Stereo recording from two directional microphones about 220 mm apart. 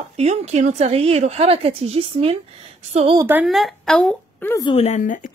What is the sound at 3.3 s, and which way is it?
A woman's voice, 5° right (ahead or behind).